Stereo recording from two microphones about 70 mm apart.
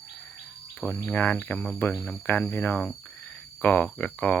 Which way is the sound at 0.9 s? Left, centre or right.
Left.